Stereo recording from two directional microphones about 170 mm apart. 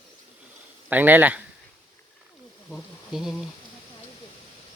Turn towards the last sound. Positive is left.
turn(degrees=0)  # may be behind; listen again after turning